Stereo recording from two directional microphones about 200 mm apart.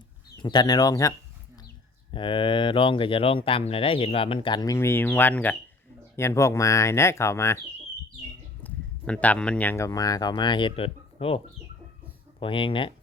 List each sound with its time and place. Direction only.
0.4 s speech: 20° left (ahead or behind)
2.1 s speech: 25° left (ahead or behind)
8.6 s speech: 5° left (ahead or behind); by 12.9 s 25° left (ahead or behind)